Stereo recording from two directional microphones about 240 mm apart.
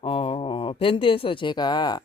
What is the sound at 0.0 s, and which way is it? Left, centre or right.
Speech, left.